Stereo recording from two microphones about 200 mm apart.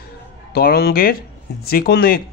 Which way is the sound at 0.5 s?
50° left (ahead or behind).